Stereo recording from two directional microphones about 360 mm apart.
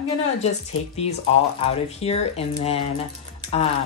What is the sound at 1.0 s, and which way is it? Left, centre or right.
Speech, centre.